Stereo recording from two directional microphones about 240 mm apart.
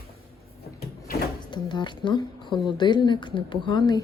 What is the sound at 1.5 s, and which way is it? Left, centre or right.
Speech, centre.